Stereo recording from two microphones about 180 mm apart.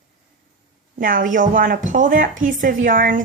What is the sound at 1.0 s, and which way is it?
A woman's voice, 50° right (ahead or behind).